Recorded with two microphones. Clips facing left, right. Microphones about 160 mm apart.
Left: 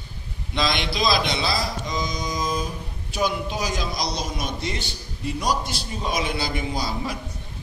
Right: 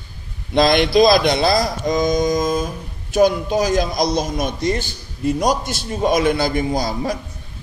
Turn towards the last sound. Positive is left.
turn(degrees=-45)  # may be behind; listen again after turning